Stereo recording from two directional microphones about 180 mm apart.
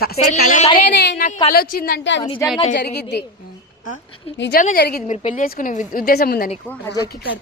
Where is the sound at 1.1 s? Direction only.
45° left (ahead or behind).